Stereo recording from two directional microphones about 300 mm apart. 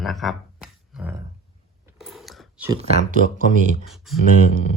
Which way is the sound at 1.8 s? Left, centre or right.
Centre.